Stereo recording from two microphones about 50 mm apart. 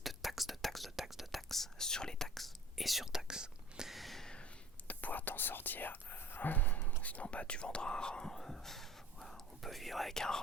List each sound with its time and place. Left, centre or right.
0.0 s whispering: centre
3.9 s a sound: centre
4.9 s whispering: left; by 10.4 s centre